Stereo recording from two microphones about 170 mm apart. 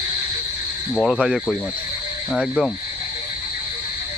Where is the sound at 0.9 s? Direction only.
5° right (ahead or behind).